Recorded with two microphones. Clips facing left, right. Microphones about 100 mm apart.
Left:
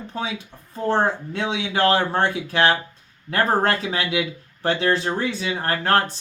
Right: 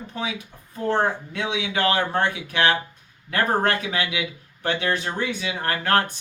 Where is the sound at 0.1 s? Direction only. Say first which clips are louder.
Left 1 dB; 30° left (ahead or behind).